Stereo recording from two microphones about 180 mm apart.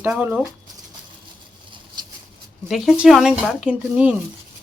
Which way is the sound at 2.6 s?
Centre (ahead or behind).